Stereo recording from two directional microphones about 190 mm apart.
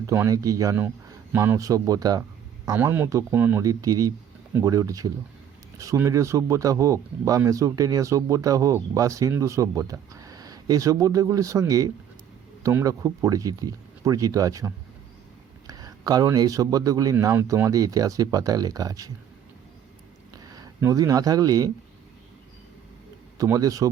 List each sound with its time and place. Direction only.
0.0 s speech: 15° right (ahead or behind)
20.5 s speech: 20° right (ahead or behind)
23.4 s speech: 20° right (ahead or behind)